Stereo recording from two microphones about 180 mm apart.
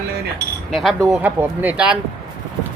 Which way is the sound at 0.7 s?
Centre (ahead or behind).